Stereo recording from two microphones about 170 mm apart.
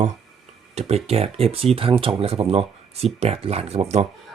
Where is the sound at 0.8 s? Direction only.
40° right (ahead or behind).